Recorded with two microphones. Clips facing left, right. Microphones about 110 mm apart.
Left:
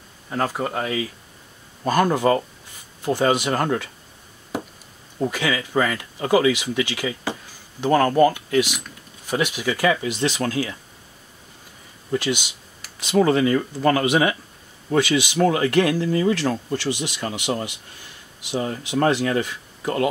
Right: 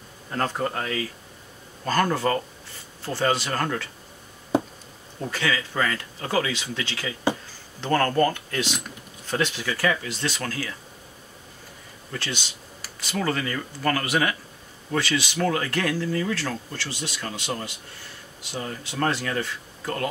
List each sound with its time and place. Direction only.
0.3 s speech: 10° left (ahead or behind)
5.3 s speech: 15° left (ahead or behind)
12.1 s speech: 15° left (ahead or behind)